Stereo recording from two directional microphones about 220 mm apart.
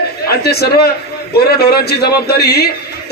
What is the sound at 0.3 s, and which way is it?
A man's voice, 45° left (ahead or behind).